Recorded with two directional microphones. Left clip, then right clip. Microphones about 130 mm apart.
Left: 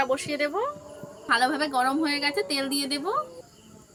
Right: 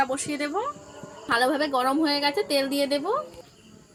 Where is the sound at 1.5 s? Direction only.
35° left (ahead or behind).